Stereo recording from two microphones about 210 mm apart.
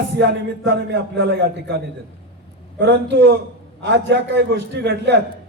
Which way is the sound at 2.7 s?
60° right (ahead or behind).